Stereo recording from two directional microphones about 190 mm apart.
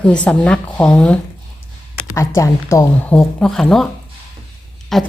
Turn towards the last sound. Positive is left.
turn(degrees=0)  # may be behind; listen again after turning